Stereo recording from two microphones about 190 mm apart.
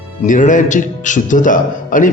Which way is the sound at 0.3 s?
40° left (ahead or behind).